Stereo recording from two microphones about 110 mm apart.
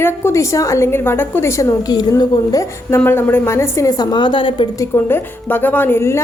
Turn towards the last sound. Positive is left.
turn(degrees=20)  # may be behind; listen again after turning